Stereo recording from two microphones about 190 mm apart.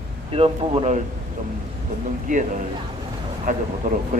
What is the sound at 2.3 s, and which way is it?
Speech, 40° right (ahead or behind).